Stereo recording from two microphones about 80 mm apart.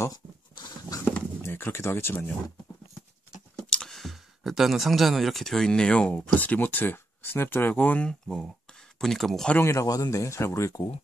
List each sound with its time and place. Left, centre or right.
0.1 s a sound: left
1.4 s speech: left
3.7 s speech: centre
9.6 s speech: left
9.8 s speech: left